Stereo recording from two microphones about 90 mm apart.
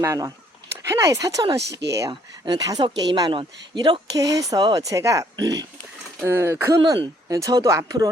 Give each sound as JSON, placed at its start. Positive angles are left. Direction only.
{"t": 0.0, "sound": "a woman's voice", "side_deg": -35}
{"t": 2.8, "sound": "speech", "side_deg": -55}
{"t": 4.2, "sound": "speech", "side_deg": -40}
{"t": 6.2, "sound": "speech", "side_deg": -30}